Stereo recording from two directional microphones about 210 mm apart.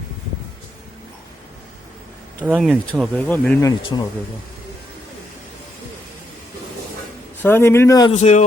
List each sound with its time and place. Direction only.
2.4 s speech: 5° right (ahead or behind)
3.2 s speech: 5° left (ahead or behind)
7.4 s speech: 10° left (ahead or behind)
8.1 s a man's voice: 35° left (ahead or behind)